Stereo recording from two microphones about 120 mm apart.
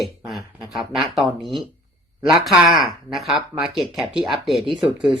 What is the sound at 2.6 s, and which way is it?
Speech, 30° right (ahead or behind).